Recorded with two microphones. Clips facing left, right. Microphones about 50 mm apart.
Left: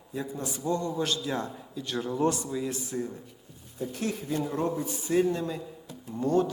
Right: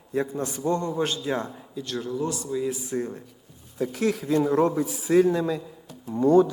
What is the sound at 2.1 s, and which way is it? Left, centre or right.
Speech, left.